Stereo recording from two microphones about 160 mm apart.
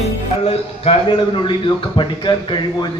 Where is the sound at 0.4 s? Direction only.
40° left (ahead or behind).